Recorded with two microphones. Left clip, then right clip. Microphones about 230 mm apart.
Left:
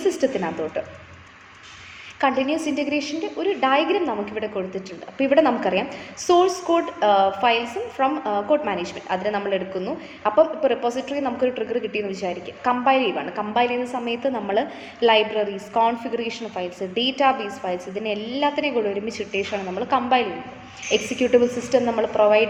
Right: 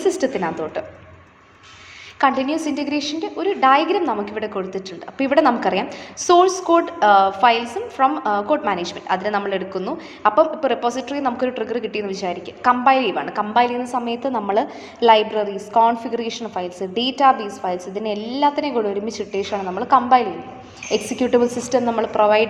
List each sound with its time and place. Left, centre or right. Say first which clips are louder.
0.0 s a woman's voice: right 2 dB; right
2.2 s a woman's voice: right 3 dB; centre